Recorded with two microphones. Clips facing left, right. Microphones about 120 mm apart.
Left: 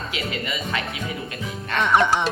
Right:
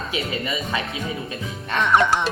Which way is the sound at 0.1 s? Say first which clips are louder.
Right 3 dB; 20° right (ahead or behind).